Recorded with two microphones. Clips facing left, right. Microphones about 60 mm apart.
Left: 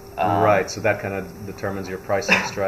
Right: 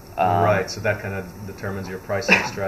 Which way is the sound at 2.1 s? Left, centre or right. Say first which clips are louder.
Left 3 dB; centre.